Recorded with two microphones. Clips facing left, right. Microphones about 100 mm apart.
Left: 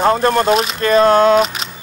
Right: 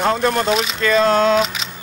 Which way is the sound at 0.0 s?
45° left (ahead or behind).